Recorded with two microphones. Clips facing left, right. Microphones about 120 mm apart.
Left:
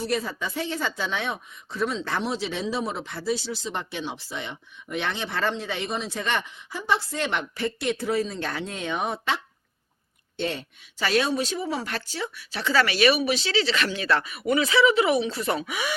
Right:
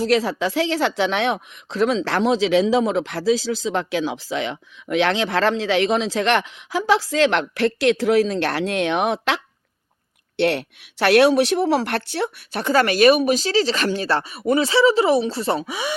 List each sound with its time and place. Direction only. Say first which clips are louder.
0.0 s speech: right 9 dB; 90° right
10.3 s speech: right 9 dB; 75° right (ahead or behind); by 16.0 s 25° right (ahead or behind)